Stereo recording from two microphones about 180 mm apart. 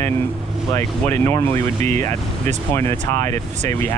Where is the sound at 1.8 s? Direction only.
40° right (ahead or behind).